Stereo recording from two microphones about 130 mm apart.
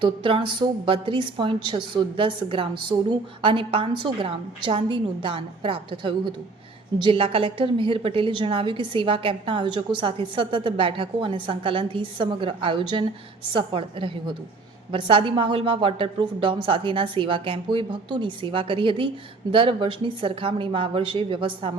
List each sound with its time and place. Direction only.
0.0 s a woman's voice: 40° right (ahead or behind)